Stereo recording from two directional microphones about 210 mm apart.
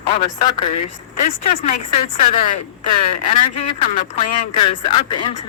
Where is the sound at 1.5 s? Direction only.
30° left (ahead or behind).